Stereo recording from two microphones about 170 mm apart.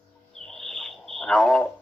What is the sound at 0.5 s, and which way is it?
Bird, centre (ahead or behind).